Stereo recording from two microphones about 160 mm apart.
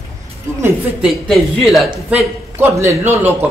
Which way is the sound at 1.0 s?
Centre (ahead or behind).